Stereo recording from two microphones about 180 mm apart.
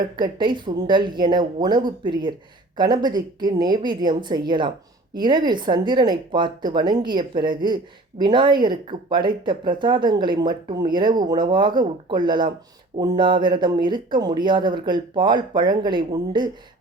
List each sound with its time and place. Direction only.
0.0 s speech: 25° right (ahead or behind)